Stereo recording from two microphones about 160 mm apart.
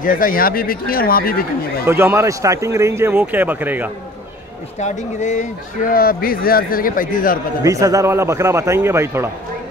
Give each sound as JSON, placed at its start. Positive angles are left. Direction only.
{"t": 0.0, "sound": "speech", "side_deg": 60}
{"t": 1.9, "sound": "speech", "side_deg": -15}
{"t": 4.7, "sound": "speech", "side_deg": 45}
{"t": 7.6, "sound": "speech", "side_deg": -20}